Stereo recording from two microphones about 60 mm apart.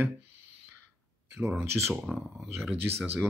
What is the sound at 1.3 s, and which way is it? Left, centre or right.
Speech, right.